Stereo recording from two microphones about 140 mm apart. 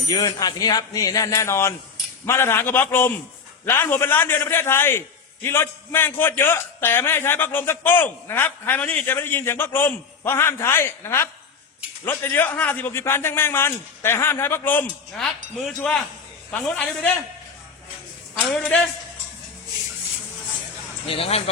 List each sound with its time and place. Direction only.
0.1 s a man's voice: 30° left (ahead or behind)
15.2 s a man's voice: 5° left (ahead or behind)
18.3 s speech: 5° left (ahead or behind)
21.1 s speech: 45° left (ahead or behind)